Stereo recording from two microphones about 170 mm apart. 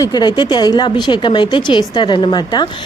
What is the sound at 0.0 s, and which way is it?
Speech, 25° left (ahead or behind).